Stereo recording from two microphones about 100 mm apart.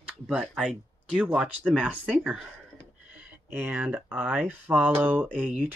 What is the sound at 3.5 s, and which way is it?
Speech, 20° right (ahead or behind).